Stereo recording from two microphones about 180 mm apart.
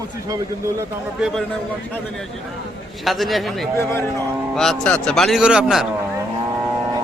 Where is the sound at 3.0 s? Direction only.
Centre (ahead or behind).